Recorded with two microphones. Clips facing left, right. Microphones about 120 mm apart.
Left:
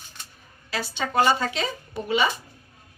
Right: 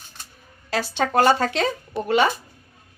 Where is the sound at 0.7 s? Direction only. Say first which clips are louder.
Right 6 dB; 80° right.